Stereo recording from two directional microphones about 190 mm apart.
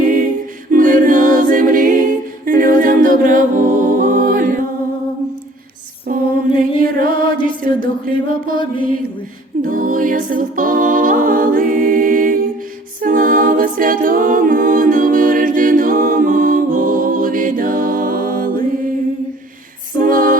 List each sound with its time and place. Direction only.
0.7 s a capella: 45° right (ahead or behind)
6.1 s female singing: 45° right (ahead or behind)
6.7 s music: 50° right (ahead or behind)
9.6 s music: 45° right (ahead or behind)
13.0 s a capella: 45° right (ahead or behind)
20.0 s music: 45° right (ahead or behind)